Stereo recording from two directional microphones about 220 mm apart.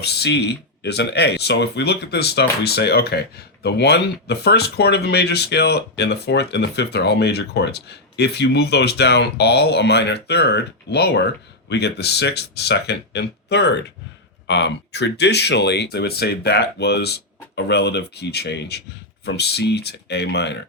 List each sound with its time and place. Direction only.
0.0 s speech: 50° left (ahead or behind)